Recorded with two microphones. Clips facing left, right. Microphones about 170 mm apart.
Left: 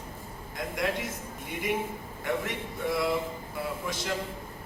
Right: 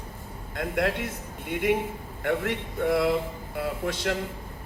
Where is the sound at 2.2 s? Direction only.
65° right (ahead or behind).